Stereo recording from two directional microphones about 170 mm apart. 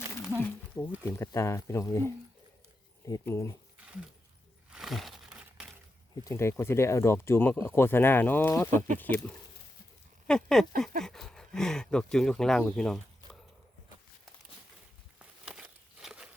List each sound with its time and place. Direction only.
0.3 s a sound: 10° left (ahead or behind)
1.0 s speech: 15° left (ahead or behind)
4.7 s crumpling: centre (ahead or behind)
6.2 s speech: 15° left (ahead or behind)
10.2 s speech: 5° left (ahead or behind)
15.2 s crumpling: 5° right (ahead or behind)